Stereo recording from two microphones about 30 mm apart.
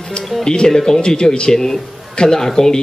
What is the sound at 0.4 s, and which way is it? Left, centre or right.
Speech, left.